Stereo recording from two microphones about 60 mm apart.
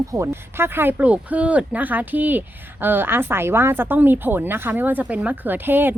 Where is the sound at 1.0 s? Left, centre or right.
Right.